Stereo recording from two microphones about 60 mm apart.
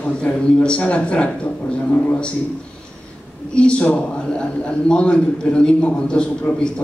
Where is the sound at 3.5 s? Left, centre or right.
Centre.